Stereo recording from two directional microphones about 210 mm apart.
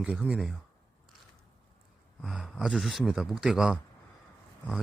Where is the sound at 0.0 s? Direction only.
5° right (ahead or behind).